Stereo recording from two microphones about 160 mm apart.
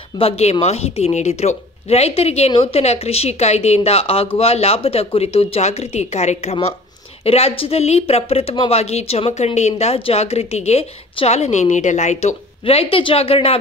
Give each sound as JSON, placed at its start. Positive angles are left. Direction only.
{"t": 0.2, "sound": "a woman's voice", "side_deg": 40}